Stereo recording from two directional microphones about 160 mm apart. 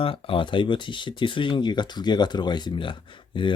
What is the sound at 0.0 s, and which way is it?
Speech, 35° left (ahead or behind).